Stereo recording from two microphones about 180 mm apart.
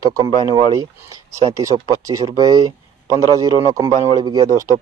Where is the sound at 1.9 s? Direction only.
20° right (ahead or behind).